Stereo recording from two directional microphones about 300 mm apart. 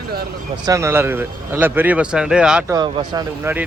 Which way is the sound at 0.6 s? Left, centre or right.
Centre.